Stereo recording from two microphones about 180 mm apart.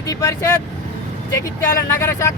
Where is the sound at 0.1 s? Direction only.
15° left (ahead or behind).